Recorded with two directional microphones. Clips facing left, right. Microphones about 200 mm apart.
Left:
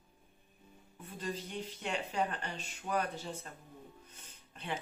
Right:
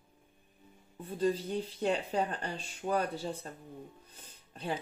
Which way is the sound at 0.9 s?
35° right (ahead or behind).